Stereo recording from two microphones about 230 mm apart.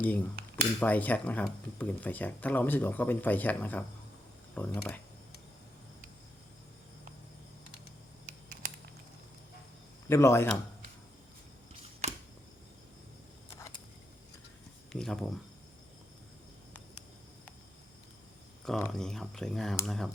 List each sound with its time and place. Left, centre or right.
0.5 s speech: centre
10.1 s speech: centre
12.0 s a sound: right
14.9 s speech: centre
18.6 s speech: centre